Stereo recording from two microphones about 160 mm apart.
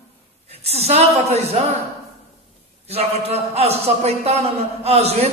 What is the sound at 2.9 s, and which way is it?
A man's voice, 40° right (ahead or behind).